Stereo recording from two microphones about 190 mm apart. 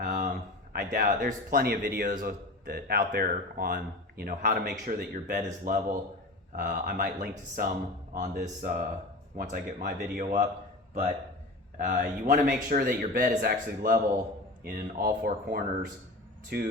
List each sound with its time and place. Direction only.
0.0 s a sound: 45° right (ahead or behind)
0.7 s a man's voice: 50° right (ahead or behind)
11.8 s a man's voice: 40° right (ahead or behind)